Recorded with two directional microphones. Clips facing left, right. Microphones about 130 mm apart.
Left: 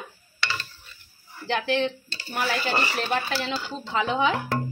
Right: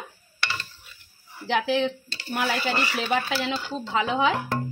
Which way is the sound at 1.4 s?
5° right (ahead or behind).